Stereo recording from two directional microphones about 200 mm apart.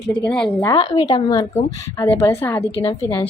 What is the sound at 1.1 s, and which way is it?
A woman's voice, 20° left (ahead or behind).